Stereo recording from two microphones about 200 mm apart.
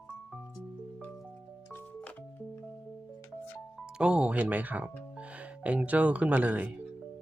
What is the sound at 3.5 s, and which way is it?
Speech, centre (ahead or behind).